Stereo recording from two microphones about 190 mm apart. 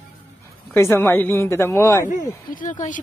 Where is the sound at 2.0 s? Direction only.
40° left (ahead or behind).